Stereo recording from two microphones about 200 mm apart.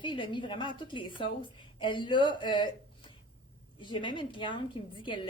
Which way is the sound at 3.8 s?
25° left (ahead or behind).